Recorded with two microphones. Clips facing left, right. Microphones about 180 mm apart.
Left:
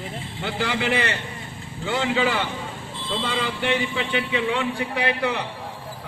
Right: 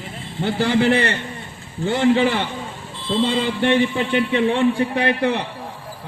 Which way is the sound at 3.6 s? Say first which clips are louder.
Right 8 dB; 40° right (ahead or behind).